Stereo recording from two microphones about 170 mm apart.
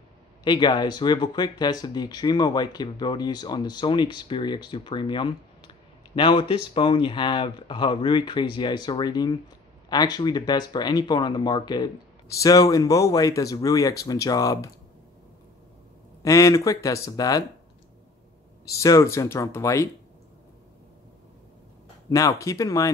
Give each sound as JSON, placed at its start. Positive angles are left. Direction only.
{"t": 0.4, "sound": "speech", "side_deg": 25}
{"t": 16.2, "sound": "speech", "side_deg": 20}
{"t": 18.8, "sound": "speech", "side_deg": 15}
{"t": 22.1, "sound": "speech", "side_deg": 20}